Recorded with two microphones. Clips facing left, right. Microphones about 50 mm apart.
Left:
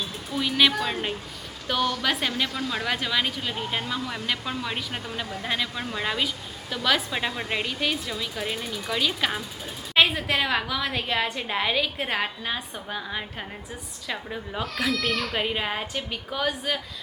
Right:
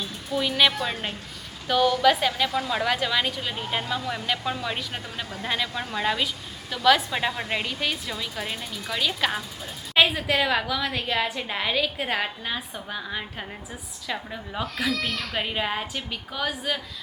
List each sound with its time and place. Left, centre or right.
0.3 s a woman's voice: centre